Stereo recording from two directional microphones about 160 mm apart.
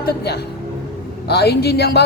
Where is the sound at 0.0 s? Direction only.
85° left.